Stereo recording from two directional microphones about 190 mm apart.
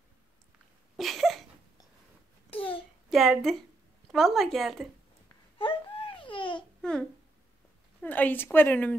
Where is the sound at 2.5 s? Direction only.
30° left (ahead or behind).